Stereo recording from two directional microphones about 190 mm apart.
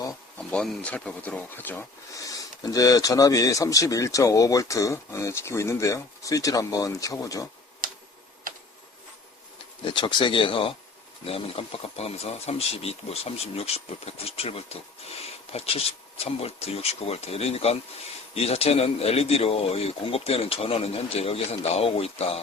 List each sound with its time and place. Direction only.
0.3 s speech: 5° left (ahead or behind)
9.8 s speech: 25° left (ahead or behind)